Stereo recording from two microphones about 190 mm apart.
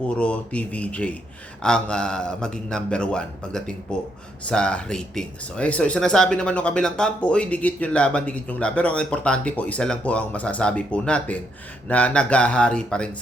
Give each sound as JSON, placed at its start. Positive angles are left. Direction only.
{"t": 0.2, "sound": "speech", "side_deg": 5}